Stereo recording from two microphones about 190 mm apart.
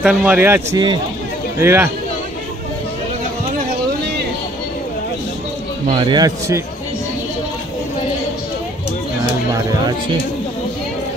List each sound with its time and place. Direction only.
0.0 s speech: 5° right (ahead or behind)
5.9 s a man's voice: 25° right (ahead or behind)